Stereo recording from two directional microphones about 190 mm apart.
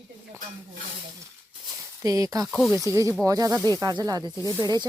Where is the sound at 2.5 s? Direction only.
Centre (ahead or behind).